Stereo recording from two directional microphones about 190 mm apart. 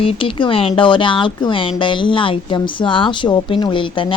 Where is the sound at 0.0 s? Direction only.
30° left (ahead or behind).